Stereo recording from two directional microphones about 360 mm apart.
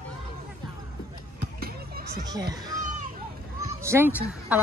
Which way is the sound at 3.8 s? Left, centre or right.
Centre.